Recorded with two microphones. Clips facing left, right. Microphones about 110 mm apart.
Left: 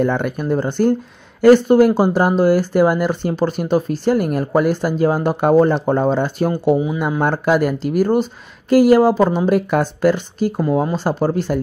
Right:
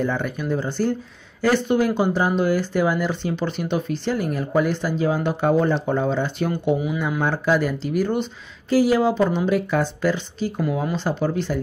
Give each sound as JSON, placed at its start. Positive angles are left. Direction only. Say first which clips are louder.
{"t": 0.0, "sound": "speech", "louder": "left 6 dB", "side_deg": 60}
{"t": 7.2, "sound": "speech", "louder": "left 5 dB", "side_deg": 50}
{"t": 10.6, "sound": "speech", "louder": "left 5 dB", "side_deg": 35}